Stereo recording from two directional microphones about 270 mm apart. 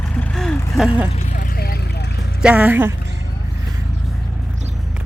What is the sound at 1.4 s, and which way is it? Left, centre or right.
Vehicle, left.